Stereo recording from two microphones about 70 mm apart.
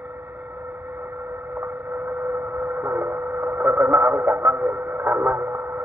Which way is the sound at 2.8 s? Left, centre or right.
Right.